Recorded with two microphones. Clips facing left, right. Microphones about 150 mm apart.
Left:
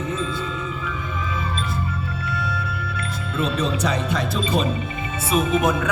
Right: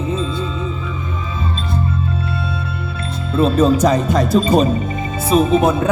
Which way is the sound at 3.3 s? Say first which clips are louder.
Right 10 dB; 40° right (ahead or behind).